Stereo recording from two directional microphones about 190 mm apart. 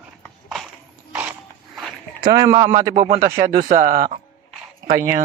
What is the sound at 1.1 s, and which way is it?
Mechanisms, 5° right (ahead or behind).